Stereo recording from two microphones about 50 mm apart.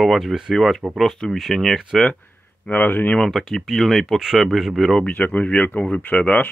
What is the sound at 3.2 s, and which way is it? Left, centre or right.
Speech, centre.